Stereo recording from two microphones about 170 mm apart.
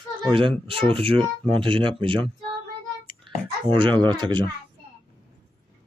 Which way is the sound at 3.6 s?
25° right (ahead or behind).